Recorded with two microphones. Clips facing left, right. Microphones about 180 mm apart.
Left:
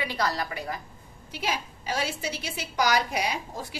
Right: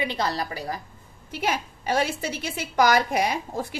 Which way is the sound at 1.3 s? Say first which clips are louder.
Right 4 dB; 55° right (ahead or behind).